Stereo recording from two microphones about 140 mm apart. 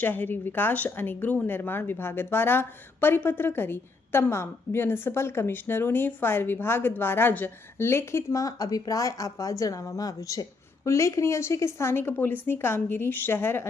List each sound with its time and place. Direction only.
0.0 s speech: 15° left (ahead or behind)